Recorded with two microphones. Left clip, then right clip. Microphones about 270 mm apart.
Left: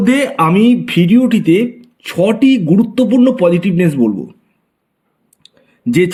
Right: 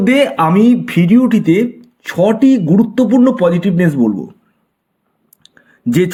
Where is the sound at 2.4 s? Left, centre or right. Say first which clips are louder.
Even; right.